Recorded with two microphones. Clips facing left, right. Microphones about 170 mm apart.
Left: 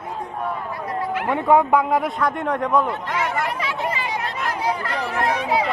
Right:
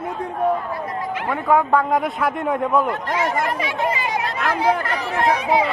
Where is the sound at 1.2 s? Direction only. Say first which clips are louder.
Left 1 dB; 15° left (ahead or behind).